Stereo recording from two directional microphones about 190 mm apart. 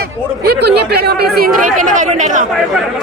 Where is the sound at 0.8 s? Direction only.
60° right (ahead or behind).